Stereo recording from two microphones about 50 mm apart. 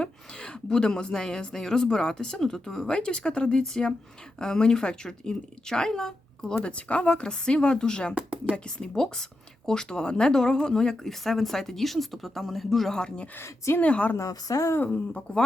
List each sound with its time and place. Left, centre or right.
0.0 s a woman's voice: centre
8.1 s speech: right
8.5 s a woman's voice: centre
13.0 s speech: left
14.2 s speech: left
14.8 s speech: left